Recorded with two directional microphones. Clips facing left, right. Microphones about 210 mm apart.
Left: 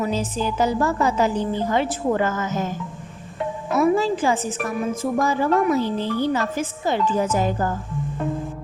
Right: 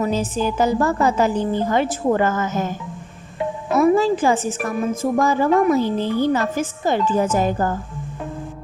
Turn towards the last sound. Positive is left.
turn(degrees=-50)  # may be behind; listen again after turning